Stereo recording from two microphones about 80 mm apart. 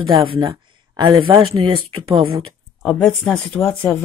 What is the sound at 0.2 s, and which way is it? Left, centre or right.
Speech, right.